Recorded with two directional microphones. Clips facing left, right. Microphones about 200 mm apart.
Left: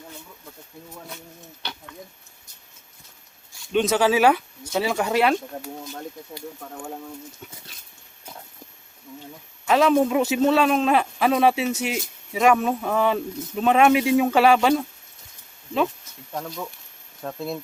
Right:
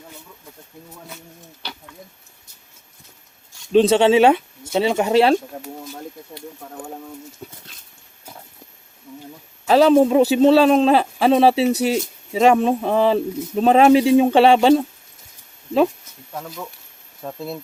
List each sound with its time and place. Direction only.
3.7 s speech: 30° right (ahead or behind)
5.6 s speech: centre (ahead or behind)
9.6 s a man's voice: 30° right (ahead or behind)
16.3 s speech: 5° right (ahead or behind)